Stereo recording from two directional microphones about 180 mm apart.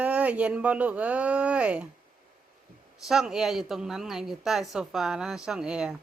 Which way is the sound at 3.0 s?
Centre (ahead or behind).